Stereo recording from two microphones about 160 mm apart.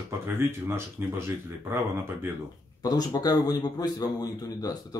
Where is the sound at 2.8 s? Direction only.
25° left (ahead or behind).